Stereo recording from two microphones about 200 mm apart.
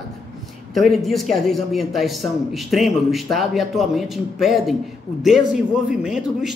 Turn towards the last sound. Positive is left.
turn(degrees=-5)  # may be behind; listen again after turning